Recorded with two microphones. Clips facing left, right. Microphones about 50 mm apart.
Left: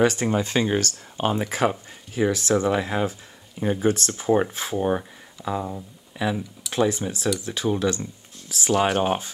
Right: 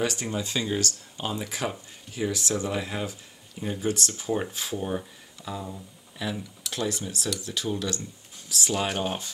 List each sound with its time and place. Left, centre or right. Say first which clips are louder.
0.0 s speech: left 8 dB; left
3.8 s speech: left 5 dB; left